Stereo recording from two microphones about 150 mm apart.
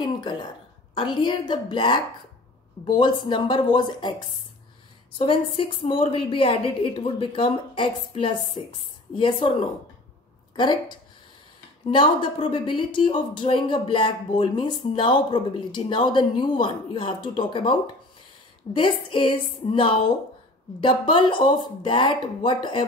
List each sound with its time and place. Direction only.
0.0 s throat clearing: 30° left (ahead or behind)
0.9 s a woman's voice: 30° left (ahead or behind)
5.2 s a woman's voice: 35° left (ahead or behind)